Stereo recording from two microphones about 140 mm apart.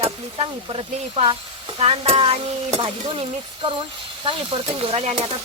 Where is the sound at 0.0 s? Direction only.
40° right (ahead or behind).